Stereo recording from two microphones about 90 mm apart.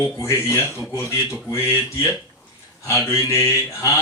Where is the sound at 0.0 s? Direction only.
35° left (ahead or behind).